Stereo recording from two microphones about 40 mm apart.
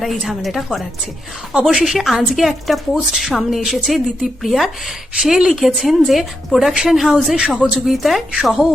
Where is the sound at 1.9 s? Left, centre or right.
Centre.